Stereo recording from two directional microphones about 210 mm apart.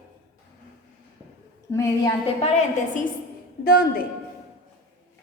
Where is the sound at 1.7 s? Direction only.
15° left (ahead or behind).